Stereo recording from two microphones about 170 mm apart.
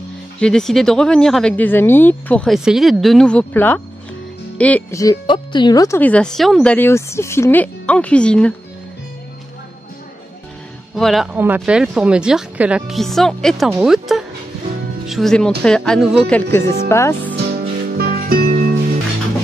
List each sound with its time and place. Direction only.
0.4 s speech: 5° left (ahead or behind)
5.0 s speech: 25° left (ahead or behind)
5.9 s speech: 10° left (ahead or behind)
11.0 s speech: centre (ahead or behind)
11.3 s speech: 10° right (ahead or behind)
16.9 s speech: 15° left (ahead or behind)
17.4 s music: 65° right (ahead or behind)